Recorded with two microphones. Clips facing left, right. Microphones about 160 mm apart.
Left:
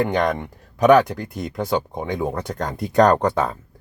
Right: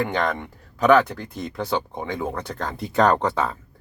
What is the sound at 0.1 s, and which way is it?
Speech, 20° left (ahead or behind).